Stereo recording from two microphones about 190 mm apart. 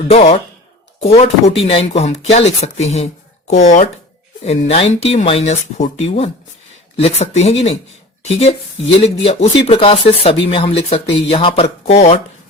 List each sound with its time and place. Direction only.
0.1 s speech: 30° left (ahead or behind)